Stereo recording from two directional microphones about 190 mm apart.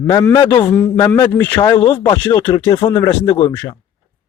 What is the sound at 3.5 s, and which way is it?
Speech, 15° left (ahead or behind).